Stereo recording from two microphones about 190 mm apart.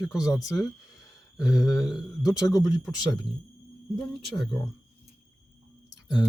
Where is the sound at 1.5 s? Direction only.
20° left (ahead or behind).